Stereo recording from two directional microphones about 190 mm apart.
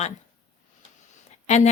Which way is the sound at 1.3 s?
35° left (ahead or behind).